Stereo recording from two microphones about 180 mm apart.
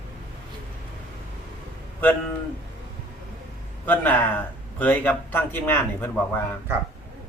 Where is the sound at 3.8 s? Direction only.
10° left (ahead or behind).